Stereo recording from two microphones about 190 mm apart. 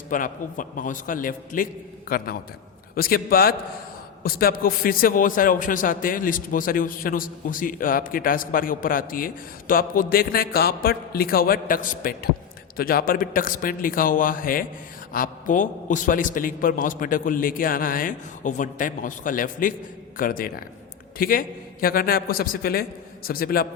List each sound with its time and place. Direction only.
0.1 s a man's voice: 45° left (ahead or behind)